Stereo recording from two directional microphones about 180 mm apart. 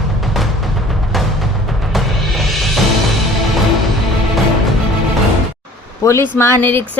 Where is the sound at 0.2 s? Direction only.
Centre (ahead or behind).